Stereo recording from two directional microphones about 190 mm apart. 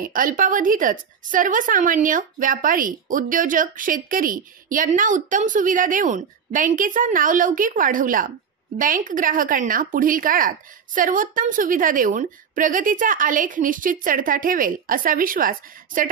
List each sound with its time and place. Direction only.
0.0 s a woman's voice: 45° right (ahead or behind)